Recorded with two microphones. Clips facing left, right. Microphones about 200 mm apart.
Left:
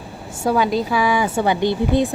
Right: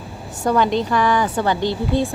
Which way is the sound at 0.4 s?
5° left (ahead or behind).